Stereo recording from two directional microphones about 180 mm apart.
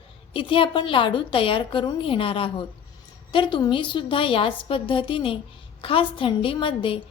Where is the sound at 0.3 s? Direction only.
30° left (ahead or behind).